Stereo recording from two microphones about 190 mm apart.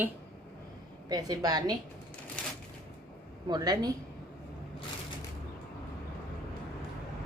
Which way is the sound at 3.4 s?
20° right (ahead or behind).